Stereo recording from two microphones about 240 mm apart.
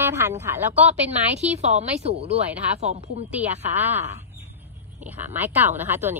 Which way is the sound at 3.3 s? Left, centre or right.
Centre.